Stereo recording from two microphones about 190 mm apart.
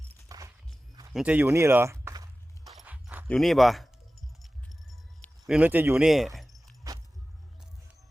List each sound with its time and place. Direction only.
0.3 s music: 20° right (ahead or behind)
1.1 s speech: 5° right (ahead or behind)
2.6 s horse: 5° right (ahead or behind)
3.2 s speech: centre (ahead or behind)
4.4 s keys jangling: centre (ahead or behind)